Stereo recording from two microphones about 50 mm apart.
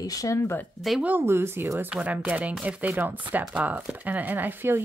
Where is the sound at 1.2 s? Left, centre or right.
Right.